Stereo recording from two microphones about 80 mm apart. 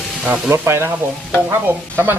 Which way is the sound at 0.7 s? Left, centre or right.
Right.